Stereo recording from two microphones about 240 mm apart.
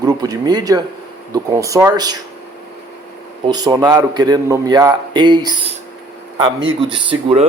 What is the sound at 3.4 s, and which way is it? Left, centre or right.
A man's voice, centre.